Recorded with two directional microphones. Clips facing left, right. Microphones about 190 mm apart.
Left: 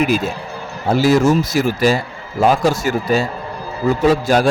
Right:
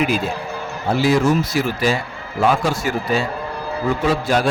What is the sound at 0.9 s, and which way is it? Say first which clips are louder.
A man's voice: left 3 dB; 45° left (ahead or behind).